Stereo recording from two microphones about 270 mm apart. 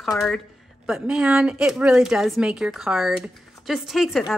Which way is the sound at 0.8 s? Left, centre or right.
Centre.